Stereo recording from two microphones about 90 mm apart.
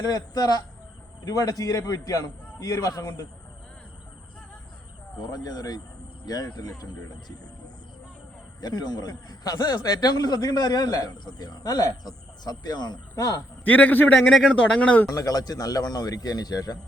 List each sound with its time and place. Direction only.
0.0 s a man's voice: 45° left (ahead or behind)
5.2 s a man's voice: 45° left (ahead or behind)
8.6 s a man's voice: 50° left (ahead or behind)
13.7 s a man's voice: 20° left (ahead or behind)
15.1 s a man's voice: 45° left (ahead or behind)